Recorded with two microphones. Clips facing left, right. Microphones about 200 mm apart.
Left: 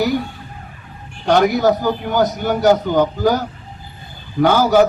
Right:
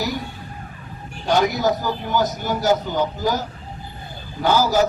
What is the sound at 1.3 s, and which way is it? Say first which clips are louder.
A man's voice: left 5 dB; 60° left (ahead or behind).